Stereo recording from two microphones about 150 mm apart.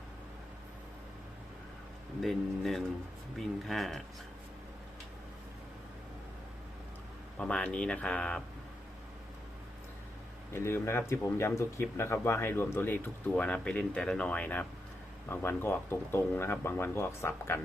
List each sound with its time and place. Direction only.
2.2 s speech: centre (ahead or behind)
7.3 s speech: 5° left (ahead or behind)
10.5 s speech: 15° left (ahead or behind)